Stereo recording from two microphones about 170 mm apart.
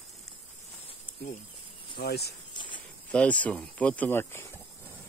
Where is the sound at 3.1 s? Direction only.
5° left (ahead or behind).